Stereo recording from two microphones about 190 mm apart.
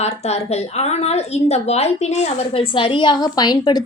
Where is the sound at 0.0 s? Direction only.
35° left (ahead or behind).